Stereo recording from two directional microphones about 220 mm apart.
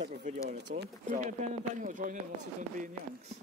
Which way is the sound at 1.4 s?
35° right (ahead or behind).